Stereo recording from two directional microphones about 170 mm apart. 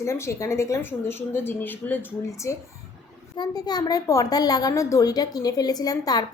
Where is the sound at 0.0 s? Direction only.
15° left (ahead or behind).